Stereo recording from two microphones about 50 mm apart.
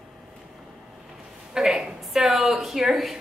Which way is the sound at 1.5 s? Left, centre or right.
Centre.